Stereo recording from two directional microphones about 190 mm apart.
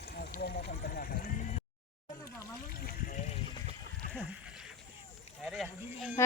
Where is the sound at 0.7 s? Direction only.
50° left (ahead or behind).